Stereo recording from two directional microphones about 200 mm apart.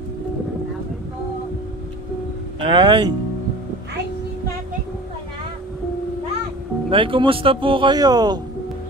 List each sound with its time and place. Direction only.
2.6 s speech: 20° right (ahead or behind)
6.9 s speech: 25° right (ahead or behind)